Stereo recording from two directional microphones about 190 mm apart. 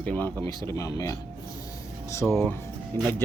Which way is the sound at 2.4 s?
10° left (ahead or behind).